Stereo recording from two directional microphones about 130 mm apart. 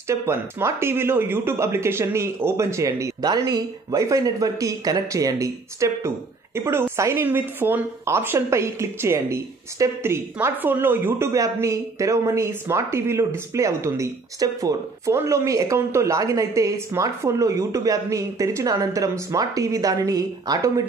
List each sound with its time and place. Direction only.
0.1 s speech: 20° right (ahead or behind)